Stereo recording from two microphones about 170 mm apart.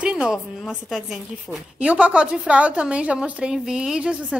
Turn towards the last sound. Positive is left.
turn(degrees=-5)  # may be behind; listen again after turning